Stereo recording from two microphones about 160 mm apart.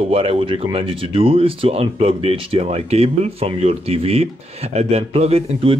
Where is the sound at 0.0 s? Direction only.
35° right (ahead or behind).